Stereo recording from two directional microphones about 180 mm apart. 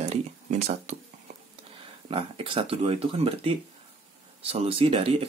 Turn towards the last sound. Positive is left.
turn(degrees=-30)  # may be behind; listen again after turning